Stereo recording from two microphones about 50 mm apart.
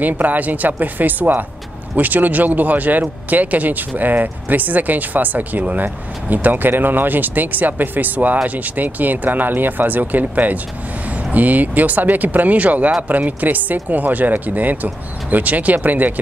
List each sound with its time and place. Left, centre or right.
0.0 s speech: right